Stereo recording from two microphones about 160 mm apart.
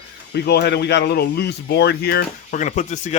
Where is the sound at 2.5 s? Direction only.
50° left (ahead or behind).